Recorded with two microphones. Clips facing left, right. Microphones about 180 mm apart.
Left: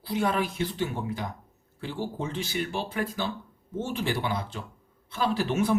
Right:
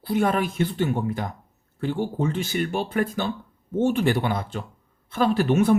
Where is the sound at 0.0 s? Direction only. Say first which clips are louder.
Right 5 dB; 55° right (ahead or behind).